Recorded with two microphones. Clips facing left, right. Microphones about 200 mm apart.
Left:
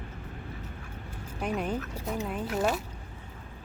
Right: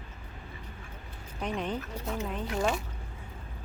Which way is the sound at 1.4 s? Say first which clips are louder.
Left 2 dB; 10° left (ahead or behind).